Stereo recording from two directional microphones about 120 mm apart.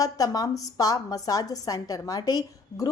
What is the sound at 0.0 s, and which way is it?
A woman's voice, 30° left (ahead or behind).